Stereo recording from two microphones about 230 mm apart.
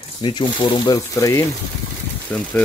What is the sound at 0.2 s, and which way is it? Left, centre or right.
Speech, left.